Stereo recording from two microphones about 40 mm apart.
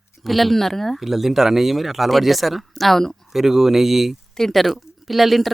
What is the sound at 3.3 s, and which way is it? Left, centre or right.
Speech, centre.